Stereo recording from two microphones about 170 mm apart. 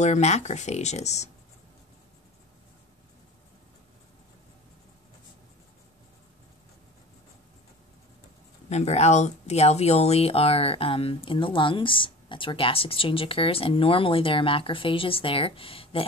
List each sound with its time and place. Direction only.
0.0 s speech: 40° left (ahead or behind)
8.6 s speech: 40° left (ahead or behind)